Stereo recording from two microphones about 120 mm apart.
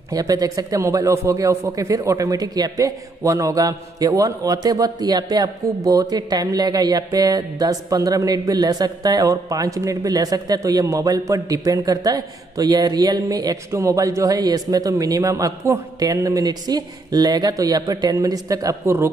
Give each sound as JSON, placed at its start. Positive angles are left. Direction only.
{"t": 0.1, "sound": "a man's voice", "side_deg": -30}